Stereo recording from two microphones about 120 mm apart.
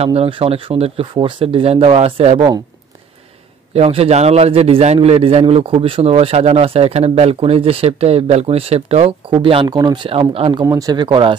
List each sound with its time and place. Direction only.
0.0 s speech: 55° right (ahead or behind)
3.7 s a man's voice: 60° right (ahead or behind)
9.7 s speech: 35° right (ahead or behind); by 10.6 s 50° right (ahead or behind)
10.6 s speech: 30° right (ahead or behind)